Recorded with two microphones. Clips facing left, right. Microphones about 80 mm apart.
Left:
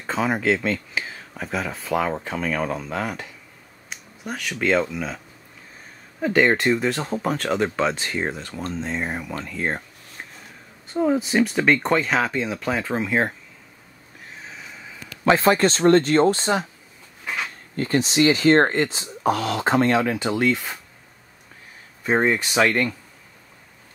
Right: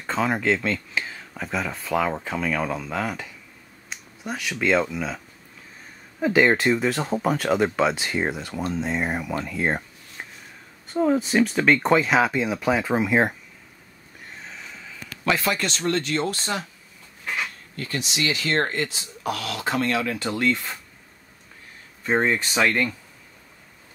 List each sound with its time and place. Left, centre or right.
0.0 s speech: centre
6.2 s speech: centre
10.9 s speech: centre
14.2 s neigh: centre
15.2 s speech: left
17.7 s speech: left
20.2 s speech: centre
22.0 s speech: centre